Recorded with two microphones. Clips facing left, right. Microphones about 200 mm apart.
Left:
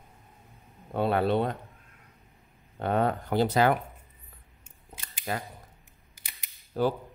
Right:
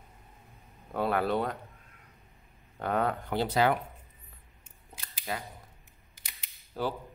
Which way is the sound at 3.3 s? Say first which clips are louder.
Left 3 dB; 45° left (ahead or behind).